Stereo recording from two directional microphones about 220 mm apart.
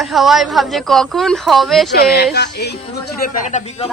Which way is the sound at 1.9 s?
45° left (ahead or behind).